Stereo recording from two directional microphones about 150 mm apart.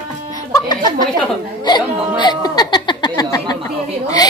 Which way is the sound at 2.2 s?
30° left (ahead or behind).